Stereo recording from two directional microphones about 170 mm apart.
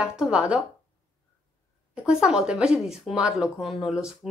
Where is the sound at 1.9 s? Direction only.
5° right (ahead or behind).